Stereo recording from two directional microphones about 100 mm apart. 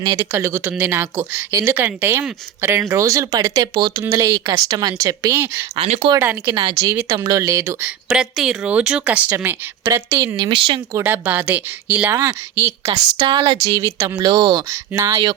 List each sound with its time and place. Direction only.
0.3 s speech: 25° right (ahead or behind); by 4.0 s 45° right (ahead or behind)
4.1 s speech: 35° right (ahead or behind)
5.7 s speech: 80° right
6.1 s speech: 20° right (ahead or behind)
6.5 s speech: 40° right (ahead or behind)
7.5 s speech: 25° right (ahead or behind)
7.9 s speech: 5° right (ahead or behind)
9.3 s speech: 25° right (ahead or behind)
10.3 s speech: 55° right (ahead or behind)
10.9 s speech: 20° right (ahead or behind)
12.9 s speech: 45° right (ahead or behind); by 14.2 s 30° right (ahead or behind)
14.2 s speech: 45° right (ahead or behind)
14.7 s speech: 35° right (ahead or behind)